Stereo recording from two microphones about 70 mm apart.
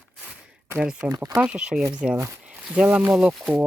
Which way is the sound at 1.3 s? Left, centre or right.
Centre.